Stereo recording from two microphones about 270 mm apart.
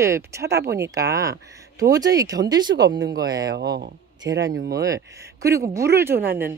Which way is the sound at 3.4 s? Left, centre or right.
Right.